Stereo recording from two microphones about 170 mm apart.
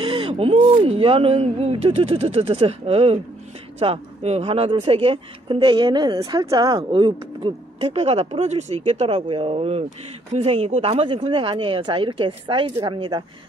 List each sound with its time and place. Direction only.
0.0 s gasp: 30° right (ahead or behind)
0.3 s speech: 35° right (ahead or behind)